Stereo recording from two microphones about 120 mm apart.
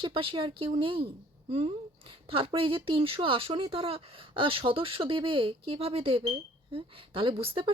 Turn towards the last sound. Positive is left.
turn(degrees=-50)  # may be behind; listen again after turning